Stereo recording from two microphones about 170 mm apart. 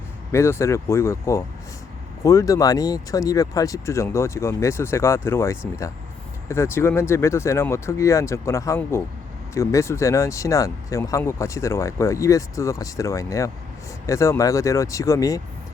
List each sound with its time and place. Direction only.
0.3 s speech: 15° left (ahead or behind)